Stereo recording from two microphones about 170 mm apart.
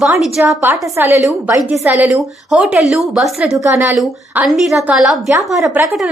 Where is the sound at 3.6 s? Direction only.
15° right (ahead or behind).